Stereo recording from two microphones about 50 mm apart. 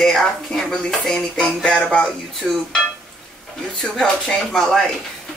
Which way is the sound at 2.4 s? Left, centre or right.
Centre.